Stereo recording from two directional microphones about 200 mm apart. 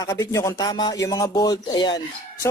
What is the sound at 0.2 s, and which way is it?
Speech, 15° left (ahead or behind).